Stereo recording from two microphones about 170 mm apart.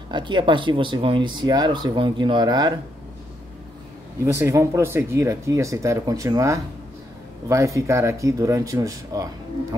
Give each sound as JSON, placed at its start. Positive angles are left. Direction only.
{"t": 0.1, "sound": "speech", "side_deg": -30}
{"t": 4.3, "sound": "speech", "side_deg": -15}